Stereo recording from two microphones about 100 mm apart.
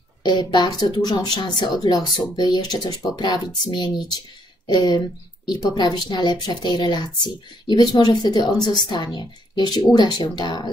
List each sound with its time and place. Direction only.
0.2 s speech: 45° left (ahead or behind)